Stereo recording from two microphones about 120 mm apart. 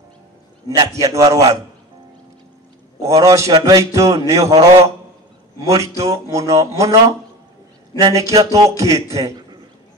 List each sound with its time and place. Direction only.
0.7 s a man's voice: 30° right (ahead or behind)
3.0 s a man's voice: 30° right (ahead or behind)